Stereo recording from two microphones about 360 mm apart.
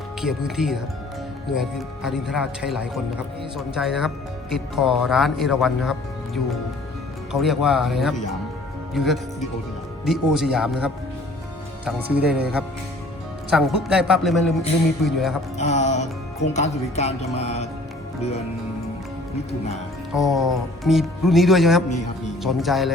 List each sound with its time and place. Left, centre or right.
0.2 s speech: centre
2.0 s speech: centre
7.4 s speech: centre
13.5 s speech: centre
15.5 s music: centre
16.5 s speech: centre
20.1 s speech: centre